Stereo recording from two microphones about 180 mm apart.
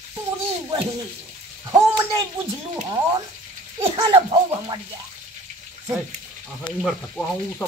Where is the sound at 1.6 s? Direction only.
20° right (ahead or behind).